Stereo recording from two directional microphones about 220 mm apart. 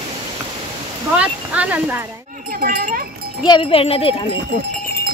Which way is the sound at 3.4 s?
25° left (ahead or behind).